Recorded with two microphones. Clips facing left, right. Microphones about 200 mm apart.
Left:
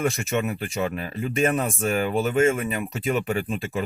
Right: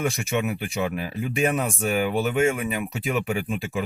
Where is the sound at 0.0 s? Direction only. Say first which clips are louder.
Left 1 dB; centre (ahead or behind).